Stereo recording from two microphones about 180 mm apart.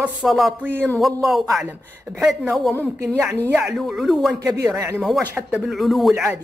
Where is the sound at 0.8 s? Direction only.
10° left (ahead or behind).